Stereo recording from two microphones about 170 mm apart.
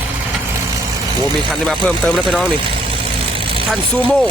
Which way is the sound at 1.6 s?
5° left (ahead or behind).